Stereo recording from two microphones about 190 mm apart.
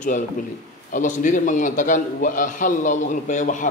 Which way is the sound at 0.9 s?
40° left (ahead or behind).